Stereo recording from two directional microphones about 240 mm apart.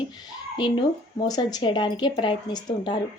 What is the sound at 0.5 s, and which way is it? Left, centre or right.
Speech, centre.